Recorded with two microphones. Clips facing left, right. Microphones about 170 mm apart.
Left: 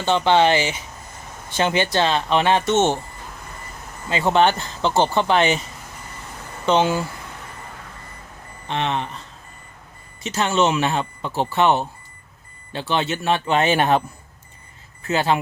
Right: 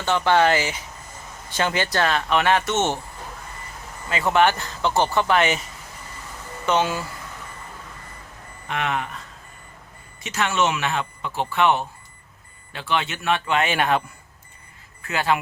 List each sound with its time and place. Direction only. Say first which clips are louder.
0.0 s speech: left 2 dB; 25° left (ahead or behind)
4.1 s speech: left 2 dB; 25° left (ahead or behind)
6.7 s speech: left 4 dB; 25° left (ahead or behind)
8.6 s speech: left 2 dB; 30° left (ahead or behind)
10.2 s speech: left 3 dB; 30° left (ahead or behind)
15.0 s speech: left 3 dB; 25° left (ahead or behind)